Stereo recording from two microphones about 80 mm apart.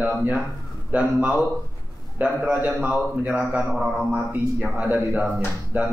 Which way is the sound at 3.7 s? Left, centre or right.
Centre.